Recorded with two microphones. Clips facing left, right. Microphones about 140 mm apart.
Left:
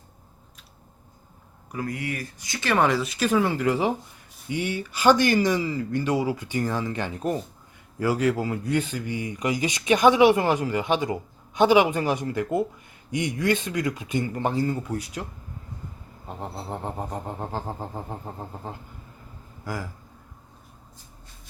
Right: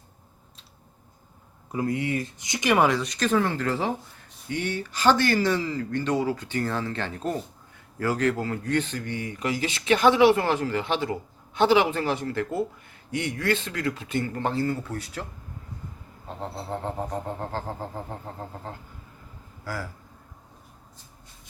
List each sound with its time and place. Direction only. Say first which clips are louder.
1.7 s speech: right 4 dB; 25° right (ahead or behind)
2.8 s speech: left 1 dB; 5° left (ahead or behind)
16.4 s speech: right 1 dB; 15° left (ahead or behind)